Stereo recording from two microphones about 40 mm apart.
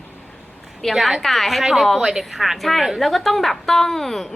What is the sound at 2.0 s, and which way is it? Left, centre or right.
A woman's voice, centre.